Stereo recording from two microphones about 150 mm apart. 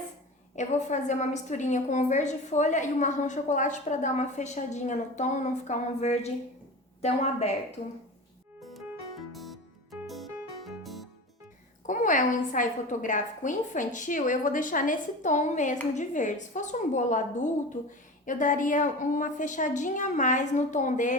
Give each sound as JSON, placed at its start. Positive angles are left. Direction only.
{"t": 0.5, "sound": "a woman's voice", "side_deg": 50}
{"t": 8.6, "sound": "music", "side_deg": 0}
{"t": 11.9, "sound": "a woman's voice", "side_deg": 60}